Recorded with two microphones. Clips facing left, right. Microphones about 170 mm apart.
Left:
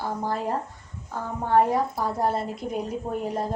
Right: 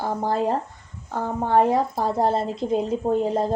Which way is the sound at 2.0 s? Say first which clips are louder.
Right 4 dB; 25° right (ahead or behind).